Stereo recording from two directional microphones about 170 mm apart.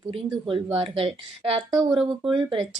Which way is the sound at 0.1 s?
30° right (ahead or behind).